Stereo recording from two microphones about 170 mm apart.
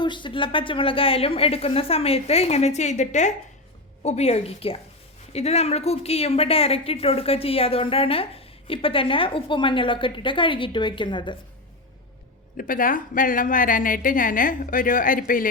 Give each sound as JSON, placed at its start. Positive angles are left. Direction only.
{"t": 0.0, "sound": "a woman's voice", "side_deg": 30}
{"t": 12.5, "sound": "a woman's voice", "side_deg": 55}